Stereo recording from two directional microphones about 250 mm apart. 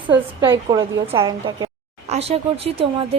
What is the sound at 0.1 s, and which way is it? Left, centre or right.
A woman's voice, centre.